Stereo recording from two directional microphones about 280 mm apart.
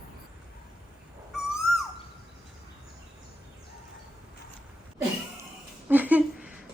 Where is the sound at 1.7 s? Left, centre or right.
Right.